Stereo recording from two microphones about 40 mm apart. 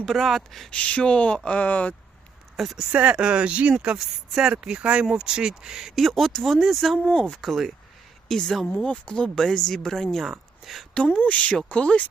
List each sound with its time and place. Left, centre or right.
0.0 s speech: centre
0.7 s speech: left
2.9 s speech: right
4.0 s speech: centre
4.6 s speech: right
6.0 s speech: centre
7.1 s speech: left
7.4 s speech: centre
8.3 s speech: centre
8.6 s speech: left
9.7 s speech: centre
10.6 s speech: centre
10.9 s speech: left